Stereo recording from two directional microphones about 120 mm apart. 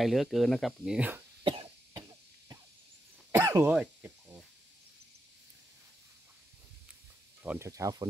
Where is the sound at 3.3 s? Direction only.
20° right (ahead or behind).